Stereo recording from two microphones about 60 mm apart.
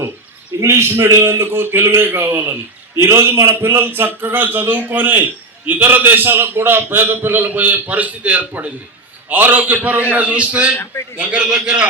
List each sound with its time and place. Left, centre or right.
0.6 s a man's voice: right; by 11.9 s centre